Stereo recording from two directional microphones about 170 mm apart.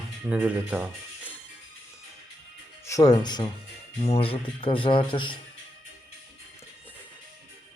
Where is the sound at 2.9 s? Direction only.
20° left (ahead or behind).